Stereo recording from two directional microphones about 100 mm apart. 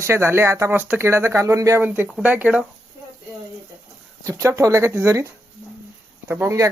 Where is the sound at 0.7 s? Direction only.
15° right (ahead or behind).